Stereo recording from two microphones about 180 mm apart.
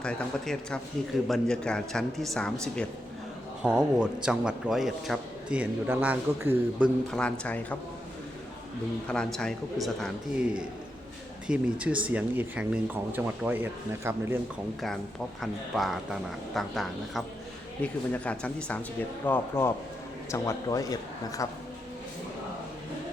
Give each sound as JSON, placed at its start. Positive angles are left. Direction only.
{"t": 0.0, "sound": "a man's voice", "side_deg": 5}
{"t": 7.1, "sound": "speech", "side_deg": 5}
{"t": 9.0, "sound": "a man's voice", "side_deg": 5}
{"t": 15.4, "sound": "a man's voice", "side_deg": 0}